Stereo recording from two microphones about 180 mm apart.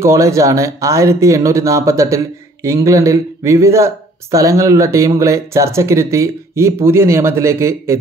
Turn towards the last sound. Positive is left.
turn(degrees=-15)  # may be behind; listen again after turning